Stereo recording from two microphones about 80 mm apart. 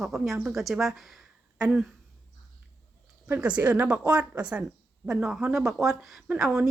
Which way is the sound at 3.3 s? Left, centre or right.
Centre.